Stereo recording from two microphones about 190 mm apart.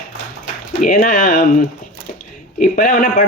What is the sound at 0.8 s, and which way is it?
A man's voice, 45° left (ahead or behind).